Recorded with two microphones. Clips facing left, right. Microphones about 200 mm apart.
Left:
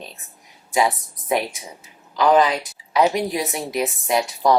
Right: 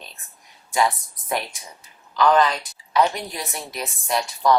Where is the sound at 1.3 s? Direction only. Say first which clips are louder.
Left 5 dB; 5° left (ahead or behind).